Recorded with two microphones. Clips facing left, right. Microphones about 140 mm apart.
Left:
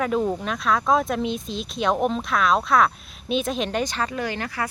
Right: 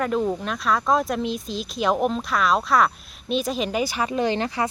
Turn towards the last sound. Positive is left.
turn(degrees=-25)  # may be behind; listen again after turning